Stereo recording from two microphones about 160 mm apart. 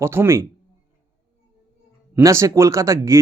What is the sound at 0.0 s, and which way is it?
Speech, 15° right (ahead or behind).